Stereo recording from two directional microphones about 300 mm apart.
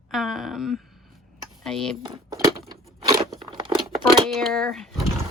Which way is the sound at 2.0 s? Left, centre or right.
Centre.